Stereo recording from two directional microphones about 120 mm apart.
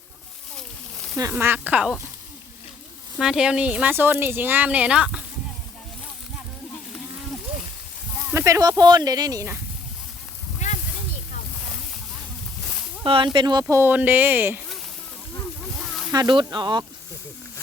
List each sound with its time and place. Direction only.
1.3 s speech: 15° right (ahead or behind)
3.2 s speech: 5° right (ahead or behind)
8.3 s speech: 25° right (ahead or behind)
13.1 s speech: 45° right (ahead or behind)
13.7 s speech: 20° right (ahead or behind)
16.1 s speech: 40° right (ahead or behind)